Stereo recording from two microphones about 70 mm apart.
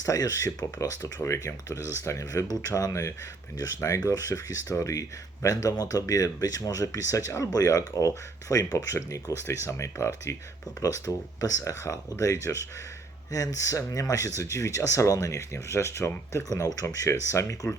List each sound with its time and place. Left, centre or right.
0.0 s speech: left
1.8 s speech: right
2.0 s speech: left
12.5 s speech: left
13.3 s speech: left